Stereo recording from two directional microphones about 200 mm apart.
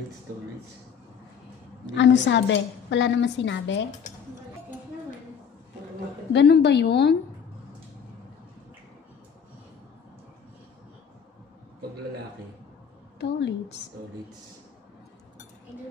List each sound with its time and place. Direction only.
1.9 s a woman's voice: 65° left (ahead or behind)
6.3 s a woman's voice: 55° left (ahead or behind)
13.2 s a woman's voice: 60° left (ahead or behind)